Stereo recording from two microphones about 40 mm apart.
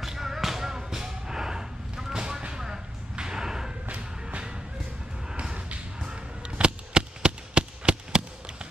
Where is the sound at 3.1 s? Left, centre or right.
Centre.